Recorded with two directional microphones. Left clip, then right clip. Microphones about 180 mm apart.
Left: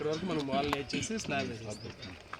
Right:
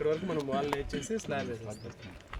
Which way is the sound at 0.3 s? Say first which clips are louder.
Even; 25° right (ahead or behind).